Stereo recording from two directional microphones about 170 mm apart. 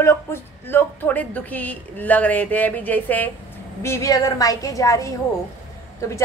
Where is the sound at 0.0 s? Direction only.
15° left (ahead or behind).